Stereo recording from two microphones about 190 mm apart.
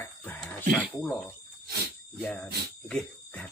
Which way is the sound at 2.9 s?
5° left (ahead or behind).